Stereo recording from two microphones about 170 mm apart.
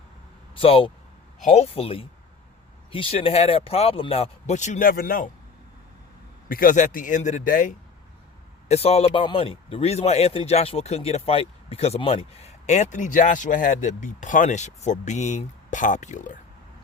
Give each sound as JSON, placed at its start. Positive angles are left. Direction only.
{"t": 0.5, "sound": "speech", "side_deg": 30}
{"t": 6.5, "sound": "a man's voice", "side_deg": 55}
{"t": 8.6, "sound": "speech", "side_deg": 40}